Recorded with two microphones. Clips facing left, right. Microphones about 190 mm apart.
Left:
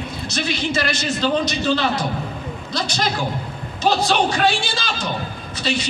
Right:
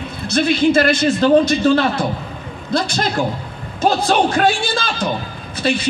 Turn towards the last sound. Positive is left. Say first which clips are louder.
# right 4 dB
turn(degrees=-55)  # may be behind; listen again after turning